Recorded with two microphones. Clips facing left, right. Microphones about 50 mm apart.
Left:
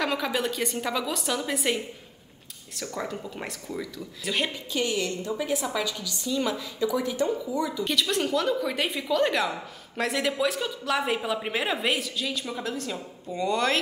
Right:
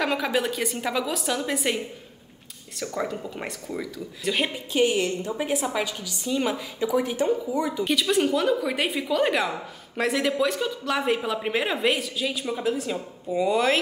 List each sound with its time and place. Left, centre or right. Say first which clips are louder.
0.0 s speech: right 2 dB; centre
4.7 s a woman's voice: right 6 dB; right
7.8 s a woman's voice: right 6 dB; centre